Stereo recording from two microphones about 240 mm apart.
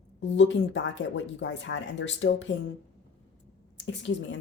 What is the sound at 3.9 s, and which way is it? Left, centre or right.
Speech, left.